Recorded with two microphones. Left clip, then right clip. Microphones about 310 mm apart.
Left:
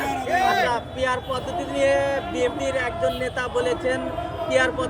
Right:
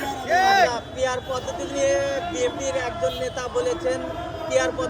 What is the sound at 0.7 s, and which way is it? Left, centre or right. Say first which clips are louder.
A man's voice: left 1 dB; left.